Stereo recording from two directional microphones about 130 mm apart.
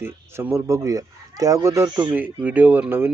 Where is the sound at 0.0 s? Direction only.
20° right (ahead or behind).